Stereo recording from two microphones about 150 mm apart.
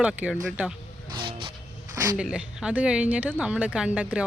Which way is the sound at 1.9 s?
25° right (ahead or behind).